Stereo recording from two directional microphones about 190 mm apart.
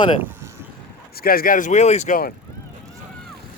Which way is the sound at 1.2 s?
50° left (ahead or behind).